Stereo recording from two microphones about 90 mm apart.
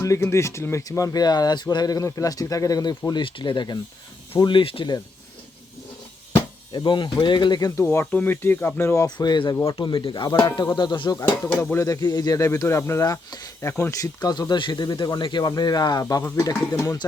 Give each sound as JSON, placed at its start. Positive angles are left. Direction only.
{"t": 0.3, "sound": "speech", "side_deg": 30}
{"t": 3.1, "sound": "speech", "side_deg": 65}
{"t": 6.7, "sound": "speech", "side_deg": 60}
{"t": 7.9, "sound": "speech", "side_deg": 20}
{"t": 9.0, "sound": "speech", "side_deg": 55}
{"t": 9.7, "sound": "speech", "side_deg": 65}
{"t": 11.6, "sound": "speech", "side_deg": 30}
{"t": 13.3, "sound": "speech", "side_deg": 45}
{"t": 13.7, "sound": "speech", "side_deg": 25}
{"t": 14.0, "sound": "speech", "side_deg": 50}